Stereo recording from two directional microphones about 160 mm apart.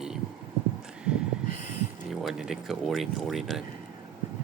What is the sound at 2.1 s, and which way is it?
Speech, 5° right (ahead or behind).